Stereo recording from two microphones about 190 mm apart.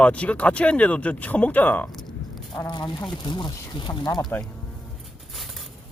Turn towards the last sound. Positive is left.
turn(degrees=20)  # may be behind; listen again after turning